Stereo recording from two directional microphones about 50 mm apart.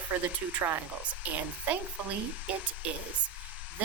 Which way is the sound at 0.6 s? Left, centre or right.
Right.